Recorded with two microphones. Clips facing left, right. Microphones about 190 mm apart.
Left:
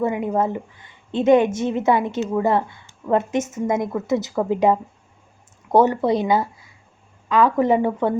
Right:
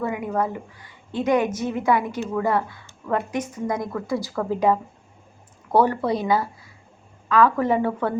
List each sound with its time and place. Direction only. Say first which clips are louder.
0.0 s a woman's voice: left 4 dB; 20° left (ahead or behind)